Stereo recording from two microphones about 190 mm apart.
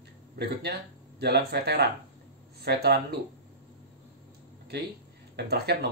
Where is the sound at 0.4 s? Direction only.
60° right (ahead or behind).